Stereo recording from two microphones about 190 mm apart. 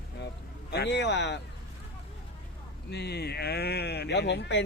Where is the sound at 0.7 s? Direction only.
60° left (ahead or behind).